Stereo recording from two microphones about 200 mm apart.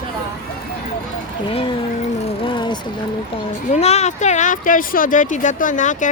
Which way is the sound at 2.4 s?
25° left (ahead or behind).